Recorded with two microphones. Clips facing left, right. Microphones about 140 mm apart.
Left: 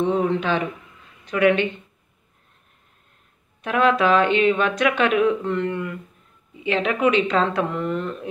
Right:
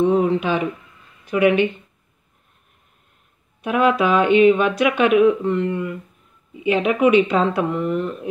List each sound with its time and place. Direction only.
0.0 s speech: 10° right (ahead or behind)
3.6 s speech: 10° right (ahead or behind)